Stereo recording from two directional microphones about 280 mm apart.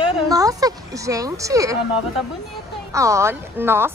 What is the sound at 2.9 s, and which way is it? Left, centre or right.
Speech, centre.